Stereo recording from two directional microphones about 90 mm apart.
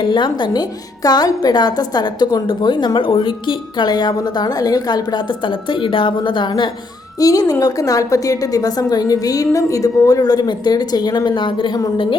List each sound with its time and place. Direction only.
0.0 s speech: 60° left (ahead or behind)
1.0 s a woman's voice: 45° left (ahead or behind); by 3.8 s 65° left (ahead or behind)
3.8 s a woman's voice: 50° left (ahead or behind)
5.5 s a woman's voice: 70° left (ahead or behind)
7.2 s a woman's voice: 40° left (ahead or behind); by 11.8 s 65° left (ahead or behind)